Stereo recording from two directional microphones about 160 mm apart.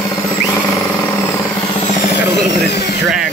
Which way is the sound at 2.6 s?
90° left.